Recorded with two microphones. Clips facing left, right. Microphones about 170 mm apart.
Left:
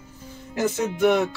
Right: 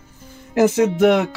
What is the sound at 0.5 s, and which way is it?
Speech, 90° right.